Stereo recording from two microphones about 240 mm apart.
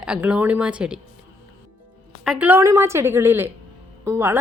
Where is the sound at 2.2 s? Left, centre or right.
Centre.